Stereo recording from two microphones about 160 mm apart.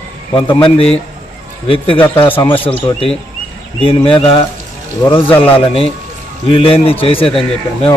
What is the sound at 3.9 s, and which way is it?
Speech, 35° left (ahead or behind).